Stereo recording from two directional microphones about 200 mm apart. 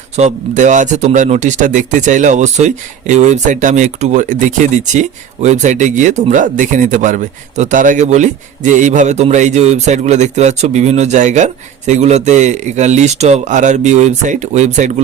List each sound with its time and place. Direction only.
0.2 s speech: 35° right (ahead or behind)